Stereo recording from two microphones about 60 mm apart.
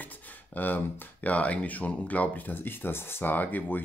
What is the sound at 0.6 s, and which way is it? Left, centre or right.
Speech, left.